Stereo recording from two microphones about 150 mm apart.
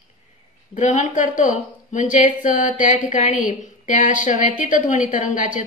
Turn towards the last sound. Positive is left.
turn(degrees=60)  # may be behind; listen again after turning